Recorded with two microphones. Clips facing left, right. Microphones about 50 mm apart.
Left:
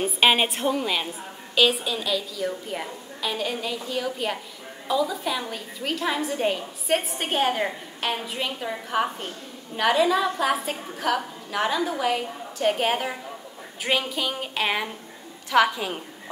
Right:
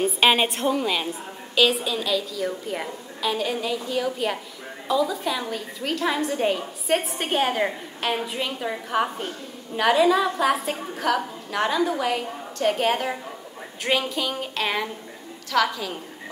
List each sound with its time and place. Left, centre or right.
0.0 s a woman's voice: centre
13.8 s music: centre
15.5 s a woman's voice: left